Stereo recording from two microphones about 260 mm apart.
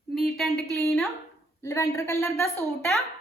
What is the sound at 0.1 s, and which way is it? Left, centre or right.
A woman's voice, centre.